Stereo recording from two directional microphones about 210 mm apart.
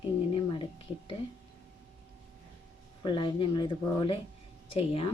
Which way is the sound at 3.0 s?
20° left (ahead or behind).